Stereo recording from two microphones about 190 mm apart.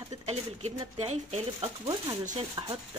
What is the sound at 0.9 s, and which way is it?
Speech, 35° right (ahead or behind).